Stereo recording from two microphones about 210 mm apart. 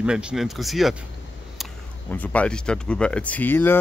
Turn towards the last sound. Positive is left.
turn(degrees=10)  # may be behind; listen again after turning